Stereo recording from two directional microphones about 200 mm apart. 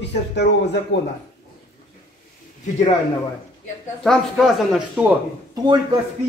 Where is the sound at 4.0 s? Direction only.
Centre (ahead or behind).